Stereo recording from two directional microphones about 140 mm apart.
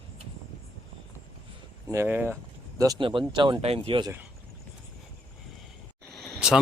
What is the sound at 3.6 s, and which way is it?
Speech, 45° right (ahead or behind).